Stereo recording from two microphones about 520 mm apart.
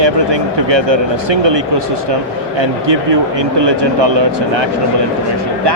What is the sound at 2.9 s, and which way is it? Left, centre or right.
Speech, right.